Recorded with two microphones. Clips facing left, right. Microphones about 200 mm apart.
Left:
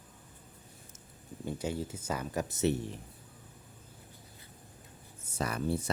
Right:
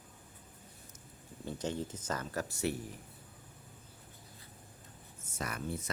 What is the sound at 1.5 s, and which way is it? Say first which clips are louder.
Speech: left 2 dB; 10° left (ahead or behind).